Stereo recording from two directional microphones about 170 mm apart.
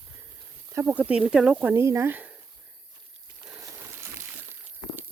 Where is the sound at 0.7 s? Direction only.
15° right (ahead or behind).